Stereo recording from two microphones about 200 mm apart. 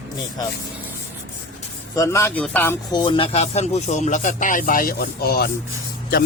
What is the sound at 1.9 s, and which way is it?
Speech, 15° left (ahead or behind).